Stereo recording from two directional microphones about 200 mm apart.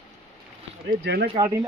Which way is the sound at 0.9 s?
55° right (ahead or behind).